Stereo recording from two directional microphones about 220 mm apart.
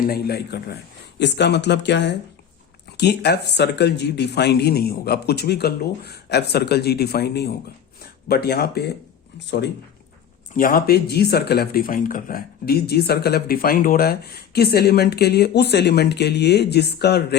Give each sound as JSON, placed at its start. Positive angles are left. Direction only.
{"t": 0.1, "sound": "speech", "side_deg": 45}
{"t": 10.5, "sound": "speech", "side_deg": 40}